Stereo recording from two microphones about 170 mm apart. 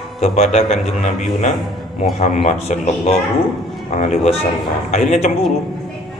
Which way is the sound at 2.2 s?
40° left (ahead or behind).